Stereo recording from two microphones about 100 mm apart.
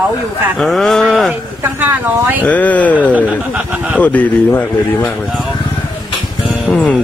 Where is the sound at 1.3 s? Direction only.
20° right (ahead or behind).